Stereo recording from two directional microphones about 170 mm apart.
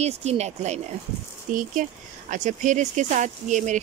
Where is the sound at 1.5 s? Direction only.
50° right (ahead or behind).